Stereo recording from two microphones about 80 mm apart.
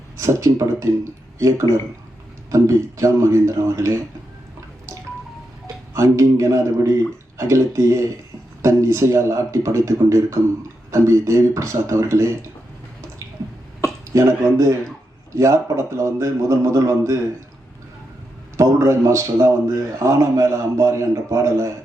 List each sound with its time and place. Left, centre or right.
0.2 s a man's voice: right
5.9 s a man's voice: right
14.1 s a man's voice: right
18.5 s a man's voice: right